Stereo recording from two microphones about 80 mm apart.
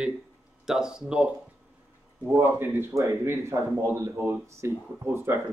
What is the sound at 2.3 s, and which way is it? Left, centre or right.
Speech, right.